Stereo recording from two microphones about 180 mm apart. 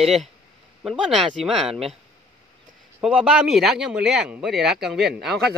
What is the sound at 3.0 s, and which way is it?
Speech, centre (ahead or behind).